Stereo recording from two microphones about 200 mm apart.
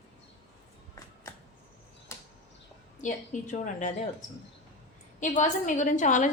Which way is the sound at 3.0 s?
40° left (ahead or behind).